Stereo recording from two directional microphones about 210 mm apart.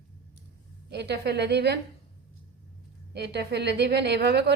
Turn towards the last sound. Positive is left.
turn(degrees=-55)  # may be behind; listen again after turning